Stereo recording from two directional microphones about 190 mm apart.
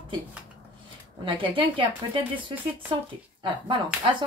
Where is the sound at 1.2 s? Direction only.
25° right (ahead or behind).